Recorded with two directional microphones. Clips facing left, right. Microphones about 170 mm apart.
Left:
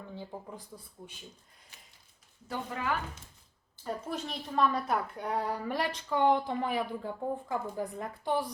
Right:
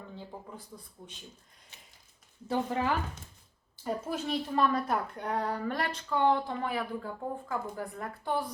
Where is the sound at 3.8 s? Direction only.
5° right (ahead or behind).